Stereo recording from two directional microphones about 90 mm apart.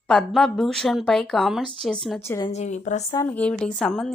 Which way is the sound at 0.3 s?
5° left (ahead or behind).